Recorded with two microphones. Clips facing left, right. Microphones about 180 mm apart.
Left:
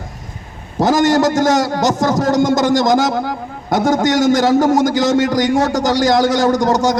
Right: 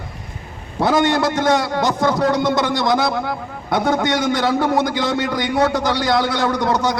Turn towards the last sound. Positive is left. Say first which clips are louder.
# left 5 dB
turn(degrees=45)  # may be behind; listen again after turning